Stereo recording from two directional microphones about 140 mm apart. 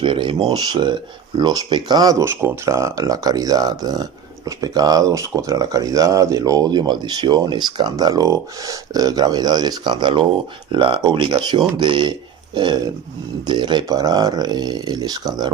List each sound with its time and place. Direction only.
0.0 s speech: 35° right (ahead or behind)